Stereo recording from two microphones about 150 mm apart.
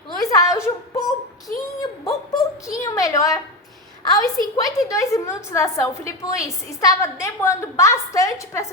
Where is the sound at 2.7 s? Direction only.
20° left (ahead or behind).